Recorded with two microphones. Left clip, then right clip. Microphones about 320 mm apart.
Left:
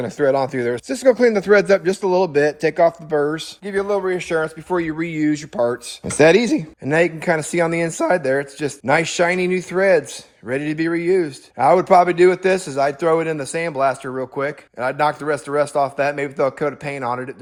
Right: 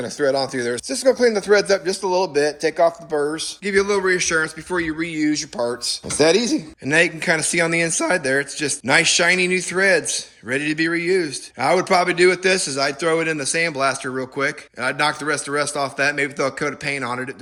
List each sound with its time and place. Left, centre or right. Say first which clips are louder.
0.0 s speech: left 2 dB; left
3.6 s a man's voice: right 2 dB; centre